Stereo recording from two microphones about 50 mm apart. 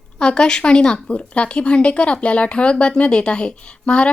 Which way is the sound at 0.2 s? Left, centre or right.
Centre.